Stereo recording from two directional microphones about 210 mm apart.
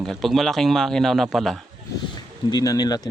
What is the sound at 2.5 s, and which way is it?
Speech, 20° left (ahead or behind).